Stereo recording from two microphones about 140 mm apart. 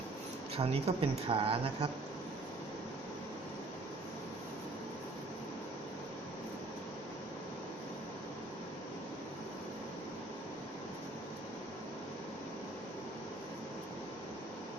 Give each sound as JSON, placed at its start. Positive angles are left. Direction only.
{"t": 0.5, "sound": "speech", "side_deg": -45}